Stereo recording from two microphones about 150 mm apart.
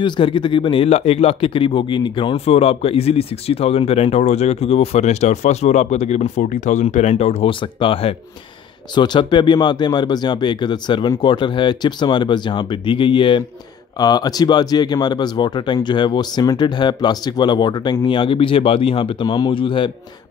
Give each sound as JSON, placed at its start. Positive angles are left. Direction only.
{"t": 0.0, "sound": "speech", "side_deg": 35}
{"t": 2.3, "sound": "speech", "side_deg": 45}